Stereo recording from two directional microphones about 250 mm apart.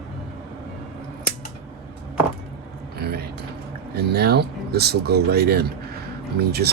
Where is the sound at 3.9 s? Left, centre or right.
Right.